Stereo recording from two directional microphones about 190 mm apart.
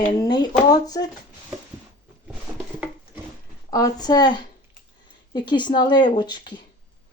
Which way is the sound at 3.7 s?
20° left (ahead or behind).